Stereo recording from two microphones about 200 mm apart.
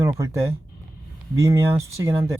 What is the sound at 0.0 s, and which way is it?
Speech, 15° right (ahead or behind).